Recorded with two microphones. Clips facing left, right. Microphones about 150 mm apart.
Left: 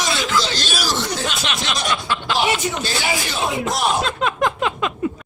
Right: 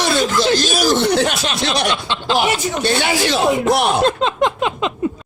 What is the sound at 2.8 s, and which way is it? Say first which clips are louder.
Speech: right 7 dB; 65° right (ahead or behind).